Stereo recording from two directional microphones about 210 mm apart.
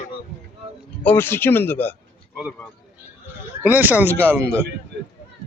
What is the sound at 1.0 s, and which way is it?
Speech, 10° left (ahead or behind).